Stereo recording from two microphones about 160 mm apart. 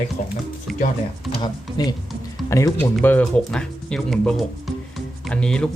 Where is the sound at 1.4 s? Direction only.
25° left (ahead or behind); by 5.7 s 5° left (ahead or behind).